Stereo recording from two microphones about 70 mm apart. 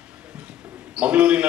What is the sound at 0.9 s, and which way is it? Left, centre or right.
Speech, centre.